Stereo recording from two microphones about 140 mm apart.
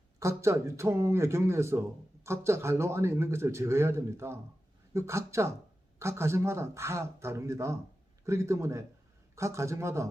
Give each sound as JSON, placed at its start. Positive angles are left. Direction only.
{"t": 0.2, "sound": "a man's voice", "side_deg": -20}